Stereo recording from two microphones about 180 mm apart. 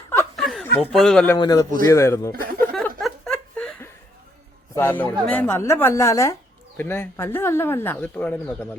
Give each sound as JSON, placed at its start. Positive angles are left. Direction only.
{"t": 0.3, "sound": "chuckle", "side_deg": 0}
{"t": 1.4, "sound": "a man's voice", "side_deg": 20}
{"t": 2.3, "sound": "speech", "side_deg": -55}
{"t": 3.0, "sound": "a sound", "side_deg": 5}
{"t": 4.7, "sound": "a man's voice", "side_deg": 10}